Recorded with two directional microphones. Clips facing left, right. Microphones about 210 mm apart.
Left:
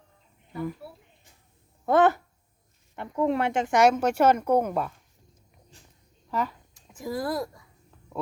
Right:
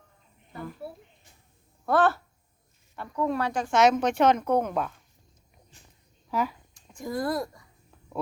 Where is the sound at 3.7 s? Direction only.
10° left (ahead or behind).